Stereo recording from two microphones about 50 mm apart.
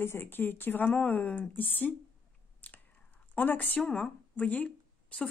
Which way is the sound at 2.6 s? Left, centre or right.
Left.